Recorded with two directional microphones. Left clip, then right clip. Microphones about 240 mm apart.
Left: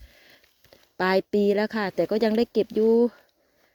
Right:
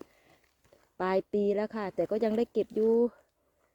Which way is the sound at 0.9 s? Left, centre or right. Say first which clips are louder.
Left 6 dB; left.